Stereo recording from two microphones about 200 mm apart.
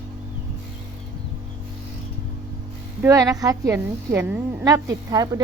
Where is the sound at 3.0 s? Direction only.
15° right (ahead or behind).